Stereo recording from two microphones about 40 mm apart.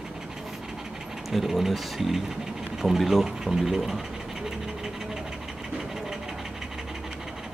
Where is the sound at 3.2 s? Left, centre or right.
Centre.